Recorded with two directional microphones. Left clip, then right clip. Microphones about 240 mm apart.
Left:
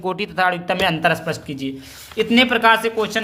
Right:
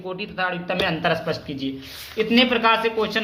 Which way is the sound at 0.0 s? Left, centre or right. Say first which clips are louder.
Left 7 dB; left.